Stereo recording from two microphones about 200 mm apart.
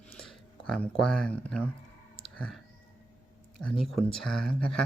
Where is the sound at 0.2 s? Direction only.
5° left (ahead or behind).